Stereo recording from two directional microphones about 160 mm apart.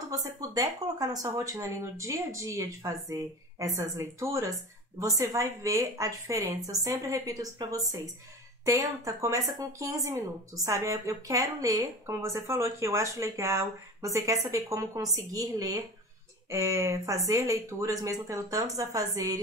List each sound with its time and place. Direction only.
0.1 s a woman's voice: 20° right (ahead or behind)